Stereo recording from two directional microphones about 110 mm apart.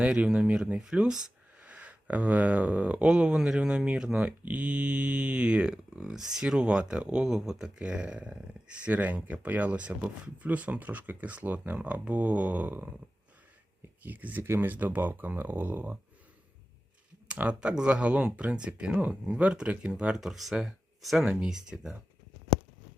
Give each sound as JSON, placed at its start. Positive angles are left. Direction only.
{"t": 0.0, "sound": "speech", "side_deg": -10}
{"t": 14.0, "sound": "speech", "side_deg": -15}
{"t": 17.2, "sound": "speech", "side_deg": -10}